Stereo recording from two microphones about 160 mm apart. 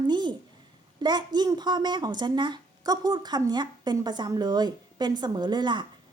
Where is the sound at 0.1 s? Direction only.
30° right (ahead or behind).